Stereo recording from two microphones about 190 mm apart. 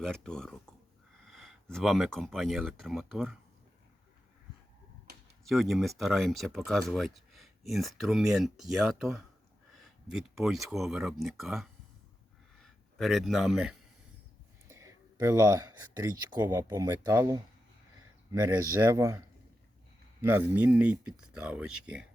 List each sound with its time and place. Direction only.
0.0 s speech: 5° left (ahead or behind)
5.5 s speech: centre (ahead or behind)
14.7 s speech: 15° right (ahead or behind)
20.2 s speech: 10° right (ahead or behind)